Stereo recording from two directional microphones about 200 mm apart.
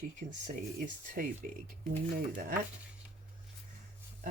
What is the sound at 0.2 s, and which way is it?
Speech, 40° right (ahead or behind).